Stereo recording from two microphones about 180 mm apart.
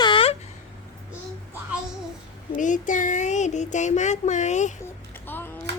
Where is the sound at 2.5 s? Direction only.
45° left (ahead or behind).